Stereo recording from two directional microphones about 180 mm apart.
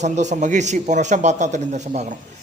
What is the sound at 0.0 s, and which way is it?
A man's voice, 40° right (ahead or behind).